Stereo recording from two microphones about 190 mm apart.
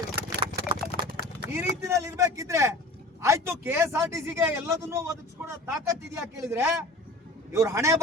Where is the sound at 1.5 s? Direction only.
15° right (ahead or behind).